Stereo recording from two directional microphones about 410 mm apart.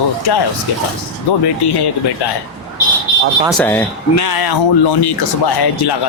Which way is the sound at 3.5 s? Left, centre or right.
Centre.